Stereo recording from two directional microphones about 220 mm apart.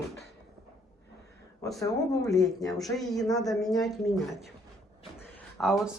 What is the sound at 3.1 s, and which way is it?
Speech, centre (ahead or behind).